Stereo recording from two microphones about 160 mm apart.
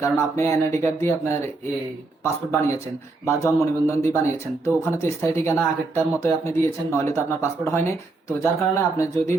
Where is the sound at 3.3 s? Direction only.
20° left (ahead or behind).